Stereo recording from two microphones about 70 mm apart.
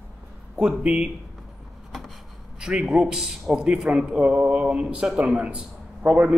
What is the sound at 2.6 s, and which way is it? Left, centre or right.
A man's voice, centre.